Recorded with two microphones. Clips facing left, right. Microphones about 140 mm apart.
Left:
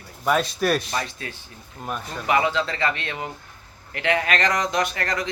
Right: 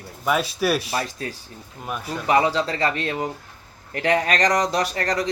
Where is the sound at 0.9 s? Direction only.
35° right (ahead or behind).